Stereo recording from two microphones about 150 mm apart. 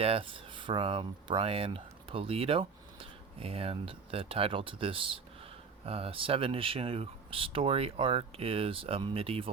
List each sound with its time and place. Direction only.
0.0 s speech: 40° right (ahead or behind)